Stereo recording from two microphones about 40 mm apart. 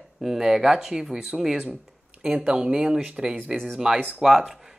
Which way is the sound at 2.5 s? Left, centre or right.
Centre.